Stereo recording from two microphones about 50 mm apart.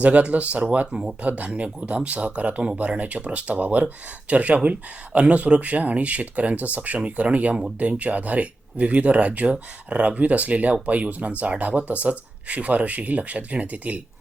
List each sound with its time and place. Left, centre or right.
0.0 s speech: right